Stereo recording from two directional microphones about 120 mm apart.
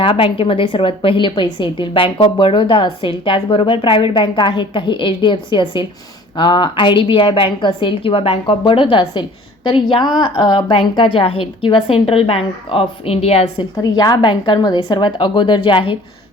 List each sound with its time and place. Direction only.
0.0 s a woman's voice: 50° left (ahead or behind)
13.7 s a woman's voice: 35° left (ahead or behind)